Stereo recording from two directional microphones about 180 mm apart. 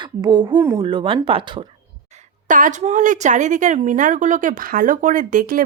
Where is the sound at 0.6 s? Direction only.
15° right (ahead or behind).